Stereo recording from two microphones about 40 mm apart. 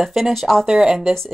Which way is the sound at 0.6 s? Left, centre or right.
Centre.